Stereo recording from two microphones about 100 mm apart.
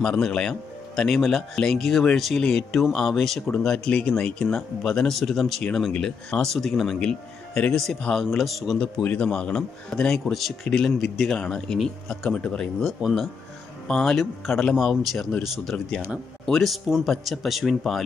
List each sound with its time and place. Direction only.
0.0 s speech: 5° left (ahead or behind)